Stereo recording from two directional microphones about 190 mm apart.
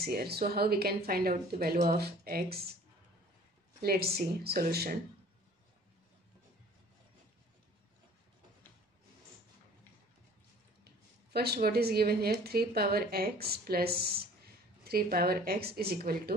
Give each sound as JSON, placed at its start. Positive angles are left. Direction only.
{"t": 0.0, "sound": "speech", "side_deg": -55}
{"t": 3.8, "sound": "a woman's voice", "side_deg": -55}
{"t": 11.3, "sound": "a woman's voice", "side_deg": -55}